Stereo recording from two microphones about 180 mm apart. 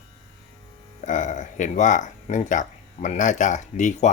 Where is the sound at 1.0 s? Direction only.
45° left (ahead or behind).